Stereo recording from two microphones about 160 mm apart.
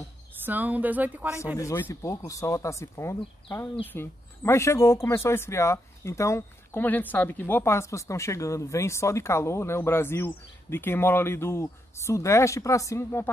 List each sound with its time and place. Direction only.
0.5 s a woman's voice: 10° right (ahead or behind)
1.6 s speech: 15° left (ahead or behind)